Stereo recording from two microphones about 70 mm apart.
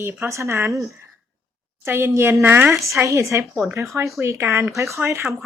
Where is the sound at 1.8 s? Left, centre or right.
Right.